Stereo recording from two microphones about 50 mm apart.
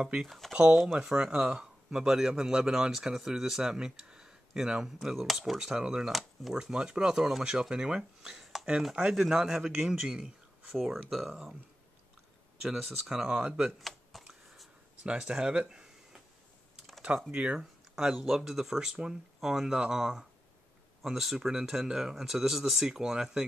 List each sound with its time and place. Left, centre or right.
0.0 s speech: centre
0.3 s speech: centre
0.9 s speech: centre
5.7 s speech: centre
8.4 s chopping: centre
9.0 s speech: right
9.3 s speech: centre
10.9 s speech: centre
12.6 s speech: centre
13.7 s computer keyboard: centre
15.0 s speech: centre
17.3 s speech: right
17.9 s speech: centre